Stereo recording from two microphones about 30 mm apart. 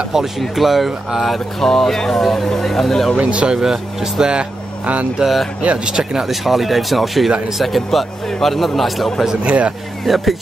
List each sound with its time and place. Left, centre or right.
0.4 s a man's voice: centre
1.7 s speech: centre
3.2 s speech: right
3.4 s speech: centre
4.2 s speech: right
5.2 s a man's voice: centre
5.6 s speech: right
6.2 s a man's voice: centre
9.4 s speech: right
10.0 s a man's voice: centre